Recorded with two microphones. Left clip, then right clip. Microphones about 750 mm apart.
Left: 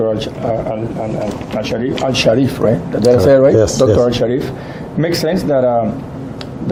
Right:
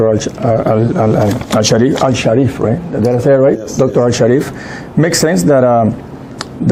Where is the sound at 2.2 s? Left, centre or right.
Right.